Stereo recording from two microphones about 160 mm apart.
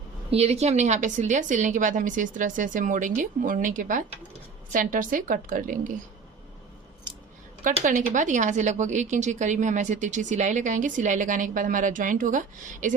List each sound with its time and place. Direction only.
0.3 s a woman's voice: 40° right (ahead or behind); by 5.9 s 55° right (ahead or behind)
7.6 s speech: 55° right (ahead or behind)